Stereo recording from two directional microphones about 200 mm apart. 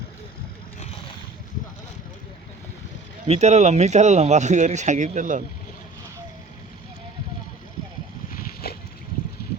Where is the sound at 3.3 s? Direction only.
35° right (ahead or behind).